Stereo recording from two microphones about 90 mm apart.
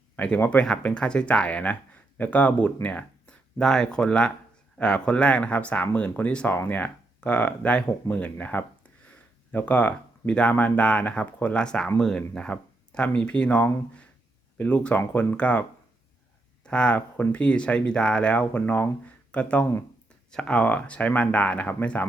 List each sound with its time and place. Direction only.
0.2 s speech: 20° left (ahead or behind)
9.0 s a sound: 20° left (ahead or behind)
10.5 s speech: 15° left (ahead or behind)
16.6 s speech: 10° left (ahead or behind)